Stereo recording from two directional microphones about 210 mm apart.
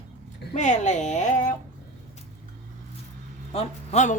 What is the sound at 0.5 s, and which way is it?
A woman's voice, 35° left (ahead or behind).